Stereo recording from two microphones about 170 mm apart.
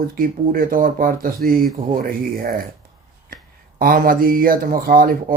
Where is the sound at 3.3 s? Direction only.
55° right (ahead or behind).